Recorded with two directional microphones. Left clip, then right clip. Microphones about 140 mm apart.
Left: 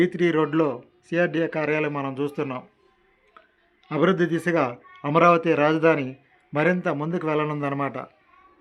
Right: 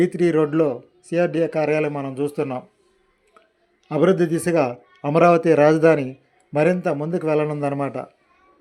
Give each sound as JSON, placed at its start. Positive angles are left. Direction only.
{"t": 0.0, "sound": "speech", "side_deg": -25}
{"t": 3.8, "sound": "speech", "side_deg": -20}